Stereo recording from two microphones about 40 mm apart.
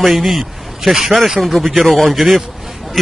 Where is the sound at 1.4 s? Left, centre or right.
Centre.